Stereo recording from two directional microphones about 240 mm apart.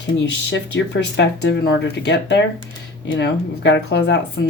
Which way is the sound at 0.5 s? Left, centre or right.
Left.